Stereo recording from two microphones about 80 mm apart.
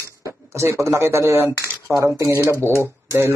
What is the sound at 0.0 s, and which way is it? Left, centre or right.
Speech, right.